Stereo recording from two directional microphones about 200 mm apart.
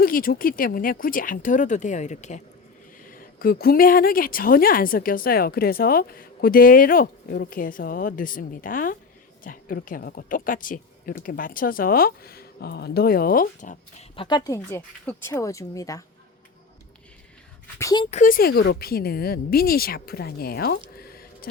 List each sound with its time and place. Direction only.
0.0 s speech: 45° left (ahead or behind)
14.2 s speech: 20° left (ahead or behind)
17.7 s speech: 20° left (ahead or behind)
18.1 s speech: 40° left (ahead or behind)
20.9 s a sound: 50° left (ahead or behind)